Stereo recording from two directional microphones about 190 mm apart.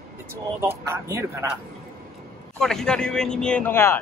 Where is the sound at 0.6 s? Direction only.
15° right (ahead or behind).